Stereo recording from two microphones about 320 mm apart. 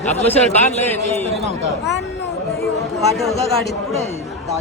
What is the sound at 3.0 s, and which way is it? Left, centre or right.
Speech, centre.